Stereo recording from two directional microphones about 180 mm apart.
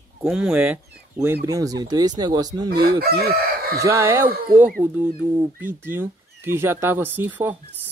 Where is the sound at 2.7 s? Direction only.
60° right (ahead or behind).